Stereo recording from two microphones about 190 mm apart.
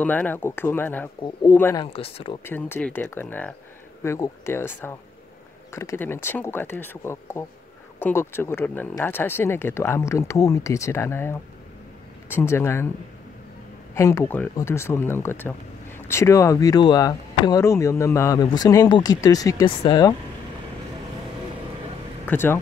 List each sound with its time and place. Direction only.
0.0 s speech: 10° left (ahead or behind)
1.9 s speech: 30° left (ahead or behind)
2.4 s speech: 10° left (ahead or behind)
12.4 s speech: 15° left (ahead or behind)
13.9 s speech: 15° left (ahead or behind)
22.3 s speech: 10° left (ahead or behind)